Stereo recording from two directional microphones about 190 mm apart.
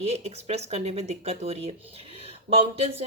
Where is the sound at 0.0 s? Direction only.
35° right (ahead or behind).